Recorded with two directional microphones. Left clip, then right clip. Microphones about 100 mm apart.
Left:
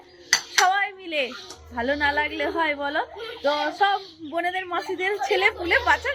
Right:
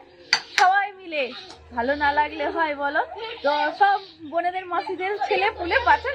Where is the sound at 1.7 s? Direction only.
25° left (ahead or behind).